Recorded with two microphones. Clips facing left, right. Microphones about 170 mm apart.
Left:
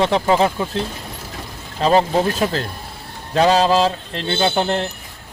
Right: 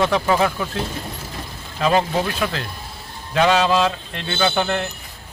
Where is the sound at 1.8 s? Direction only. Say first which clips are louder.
Left 3 dB; 35° left (ahead or behind).